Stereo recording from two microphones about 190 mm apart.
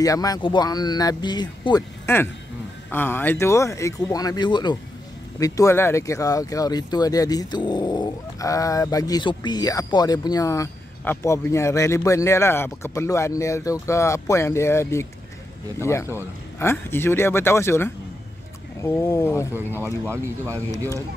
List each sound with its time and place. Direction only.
0.0 s speech: 20° left (ahead or behind)